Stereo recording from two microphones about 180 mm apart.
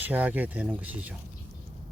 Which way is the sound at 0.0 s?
10° right (ahead or behind).